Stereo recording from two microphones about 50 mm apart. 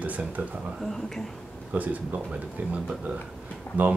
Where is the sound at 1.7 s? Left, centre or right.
Right.